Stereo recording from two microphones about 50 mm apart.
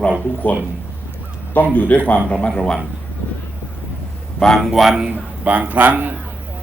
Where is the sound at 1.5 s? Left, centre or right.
Left.